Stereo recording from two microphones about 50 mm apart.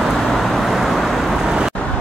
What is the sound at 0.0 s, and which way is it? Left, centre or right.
Vehicle, centre.